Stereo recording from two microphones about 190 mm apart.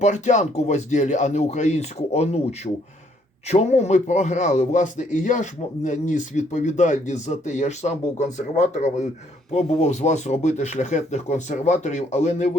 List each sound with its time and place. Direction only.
0.0 s a man's voice: 40° left (ahead or behind)